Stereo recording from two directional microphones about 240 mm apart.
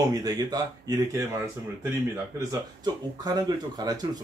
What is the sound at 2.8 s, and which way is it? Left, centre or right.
Speech, centre.